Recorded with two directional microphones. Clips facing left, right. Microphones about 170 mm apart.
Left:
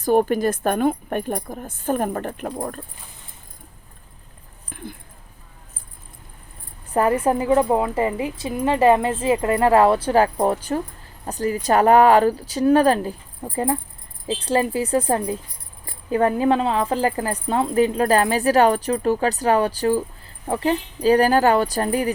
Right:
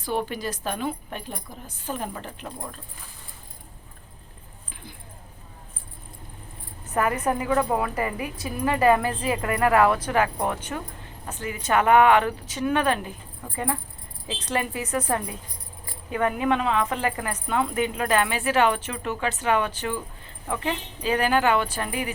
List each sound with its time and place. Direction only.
0.0 s a woman's voice: 45° left (ahead or behind)
4.7 s a sound: 50° left (ahead or behind)
6.9 s a woman's voice: 30° left (ahead or behind)